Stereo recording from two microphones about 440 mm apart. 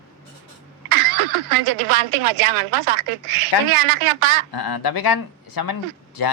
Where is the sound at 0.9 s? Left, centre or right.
Right.